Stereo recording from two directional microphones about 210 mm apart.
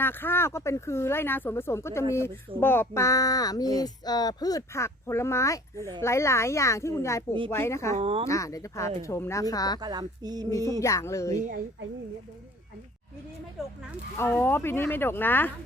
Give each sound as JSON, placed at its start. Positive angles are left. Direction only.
{"t": 0.0, "sound": "speech", "side_deg": 10}
{"t": 7.9, "sound": "speech", "side_deg": -25}
{"t": 8.3, "sound": "speech", "side_deg": 15}
{"t": 9.8, "sound": "speech", "side_deg": -20}
{"t": 10.8, "sound": "speech", "side_deg": 15}
{"t": 13.6, "sound": "speech", "side_deg": 0}
{"t": 14.2, "sound": "speech", "side_deg": 10}